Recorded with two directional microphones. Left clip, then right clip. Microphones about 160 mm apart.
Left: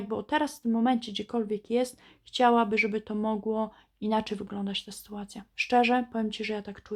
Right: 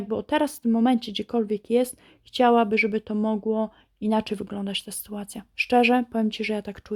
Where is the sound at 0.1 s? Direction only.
35° right (ahead or behind).